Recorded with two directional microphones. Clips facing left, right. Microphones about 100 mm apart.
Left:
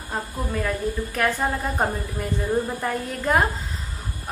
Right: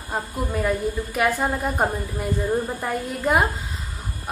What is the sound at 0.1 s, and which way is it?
A woman's voice, 10° right (ahead or behind).